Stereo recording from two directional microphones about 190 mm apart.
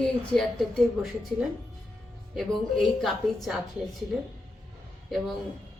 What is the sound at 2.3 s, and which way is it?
A woman's voice, centre (ahead or behind).